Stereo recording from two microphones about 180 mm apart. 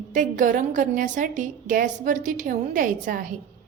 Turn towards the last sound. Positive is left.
turn(degrees=-50)  # may be behind; listen again after turning